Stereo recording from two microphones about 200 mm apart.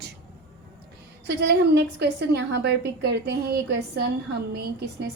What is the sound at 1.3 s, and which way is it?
A woman's voice, 55° right (ahead or behind).